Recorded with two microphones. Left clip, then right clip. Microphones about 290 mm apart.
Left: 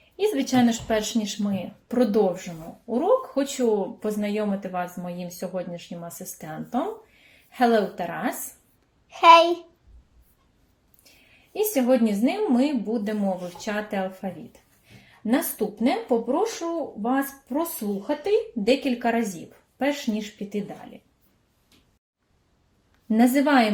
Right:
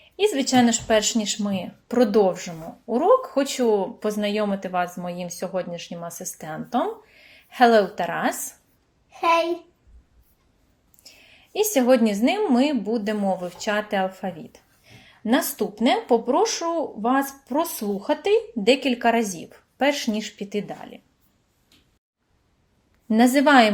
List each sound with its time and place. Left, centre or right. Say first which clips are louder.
0.2 s speech: right 3 dB; centre
11.5 s speech: right 3 dB; right
15.5 s speech: right 3 dB; right
23.0 s speech: right 3 dB; right